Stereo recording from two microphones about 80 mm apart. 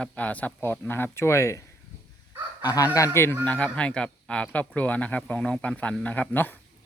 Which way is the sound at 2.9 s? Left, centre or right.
Left.